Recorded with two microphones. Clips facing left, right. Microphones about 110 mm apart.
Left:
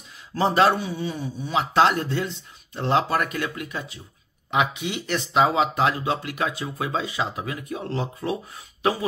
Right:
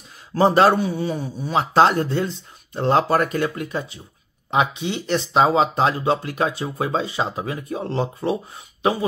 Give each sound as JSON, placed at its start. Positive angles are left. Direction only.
{"t": 0.4, "sound": "a man's voice", "side_deg": -45}